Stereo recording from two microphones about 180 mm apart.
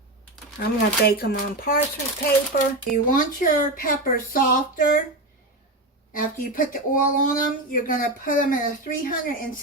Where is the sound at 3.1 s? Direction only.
50° left (ahead or behind).